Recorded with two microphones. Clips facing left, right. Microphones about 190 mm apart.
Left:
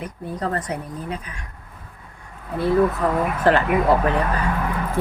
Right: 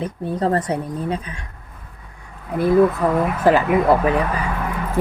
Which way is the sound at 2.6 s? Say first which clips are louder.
Right 3 dB; 10° right (ahead or behind).